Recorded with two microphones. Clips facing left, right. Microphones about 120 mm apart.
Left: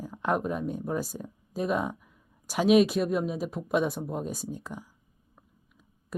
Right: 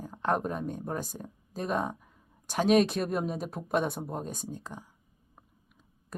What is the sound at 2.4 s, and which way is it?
Speech, 5° left (ahead or behind).